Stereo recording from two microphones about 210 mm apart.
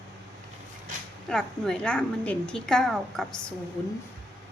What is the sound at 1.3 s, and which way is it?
A woman's voice, centre (ahead or behind).